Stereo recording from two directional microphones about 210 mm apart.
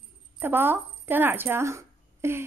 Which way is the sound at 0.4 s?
10° right (ahead or behind).